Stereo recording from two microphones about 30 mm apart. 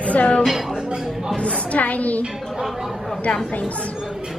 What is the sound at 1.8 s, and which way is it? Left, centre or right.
Speech, left.